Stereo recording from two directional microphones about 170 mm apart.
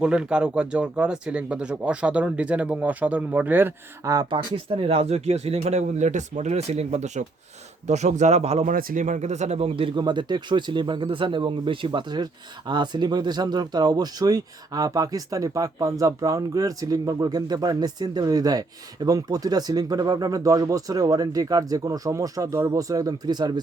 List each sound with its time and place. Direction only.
0.0 s a man's voice: 5° right (ahead or behind); by 8.7 s 40° right (ahead or behind)
8.7 s speech: 55° right (ahead or behind); by 23.5 s 25° right (ahead or behind)